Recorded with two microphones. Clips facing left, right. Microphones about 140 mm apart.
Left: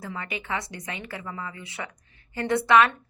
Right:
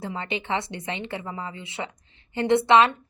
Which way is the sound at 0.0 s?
25° right (ahead or behind).